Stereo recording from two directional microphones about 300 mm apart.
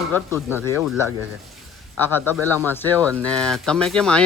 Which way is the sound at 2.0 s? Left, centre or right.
Centre.